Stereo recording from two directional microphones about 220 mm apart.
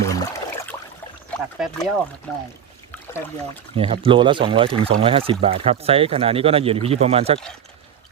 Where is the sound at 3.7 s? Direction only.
25° right (ahead or behind).